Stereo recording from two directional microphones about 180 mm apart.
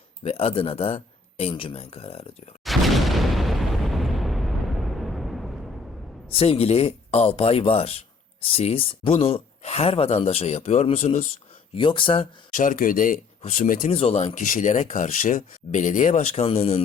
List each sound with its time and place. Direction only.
0.2 s speech: 30° left (ahead or behind)
2.6 s boom: centre (ahead or behind)
6.2 s speech: 35° left (ahead or behind)
11.7 s speech: 25° left (ahead or behind)
12.5 s speech: 50° left (ahead or behind)
13.9 s speech: 35° left (ahead or behind)
14.3 s speech: 45° left (ahead or behind)